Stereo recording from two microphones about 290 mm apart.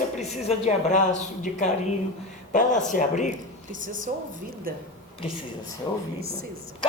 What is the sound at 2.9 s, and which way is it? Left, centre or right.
Speech, left.